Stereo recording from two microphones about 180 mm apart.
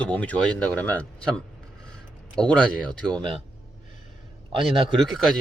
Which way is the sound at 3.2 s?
30° right (ahead or behind).